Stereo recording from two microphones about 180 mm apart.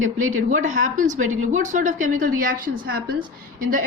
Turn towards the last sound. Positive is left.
turn(degrees=-50)  # may be behind; listen again after turning